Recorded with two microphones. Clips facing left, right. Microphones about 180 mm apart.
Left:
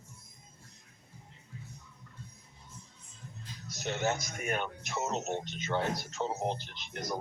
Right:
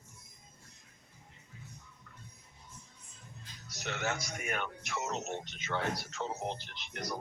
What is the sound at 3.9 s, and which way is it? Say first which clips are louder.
Speech: left 4 dB; 30° left (ahead or behind).